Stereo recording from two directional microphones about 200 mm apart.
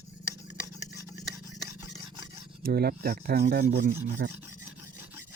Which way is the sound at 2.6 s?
50° right (ahead or behind).